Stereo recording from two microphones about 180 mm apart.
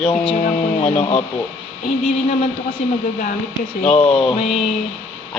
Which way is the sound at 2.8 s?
40° left (ahead or behind).